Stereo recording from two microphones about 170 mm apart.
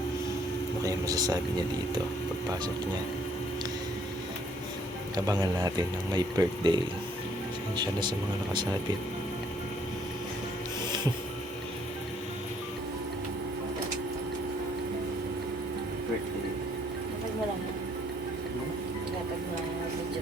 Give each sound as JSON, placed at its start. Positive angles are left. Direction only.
{"t": 0.8, "sound": "speech", "side_deg": -20}
{"t": 5.1, "sound": "speech", "side_deg": -20}
{"t": 7.8, "sound": "speech", "side_deg": -25}